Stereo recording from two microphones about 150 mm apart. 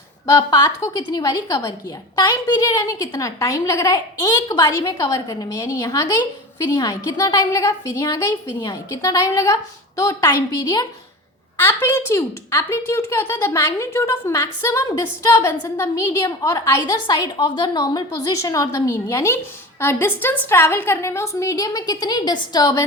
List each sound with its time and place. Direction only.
0.3 s a woman's voice: 25° left (ahead or behind)